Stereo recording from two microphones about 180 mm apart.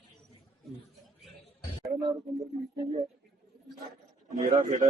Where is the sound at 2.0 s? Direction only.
25° right (ahead or behind).